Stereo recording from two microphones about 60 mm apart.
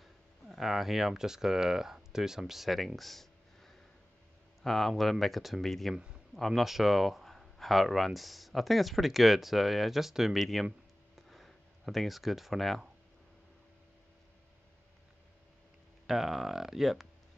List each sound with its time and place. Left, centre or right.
0.0 s speech: centre
3.0 s a sound: centre
4.6 s speech: centre
5.9 s a man's voice: centre
6.3 s speech: centre
11.1 s a sound: centre
16.1 s speech: centre